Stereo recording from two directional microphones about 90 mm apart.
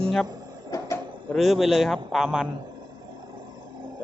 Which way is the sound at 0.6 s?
35° left (ahead or behind).